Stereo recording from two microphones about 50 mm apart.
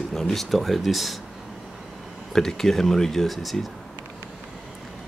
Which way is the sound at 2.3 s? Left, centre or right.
Centre.